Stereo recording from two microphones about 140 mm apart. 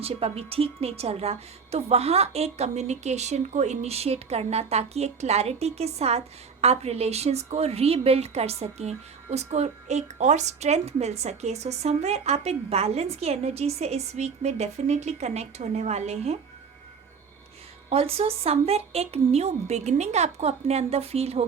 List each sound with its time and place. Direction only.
0.0 s a woman's voice: 45° right (ahead or behind)
17.8 s a woman's voice: 45° right (ahead or behind)